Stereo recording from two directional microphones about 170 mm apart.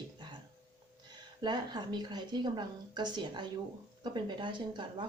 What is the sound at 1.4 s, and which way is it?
A woman's voice, 25° right (ahead or behind).